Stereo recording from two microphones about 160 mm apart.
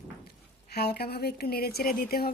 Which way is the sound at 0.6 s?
85° left.